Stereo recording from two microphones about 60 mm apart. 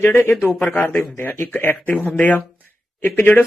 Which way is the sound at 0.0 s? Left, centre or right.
Left.